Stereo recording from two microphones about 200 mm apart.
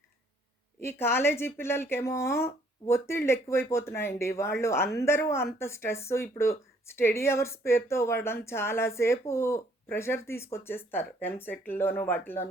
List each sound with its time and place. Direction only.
0.8 s a woman's voice: 10° left (ahead or behind)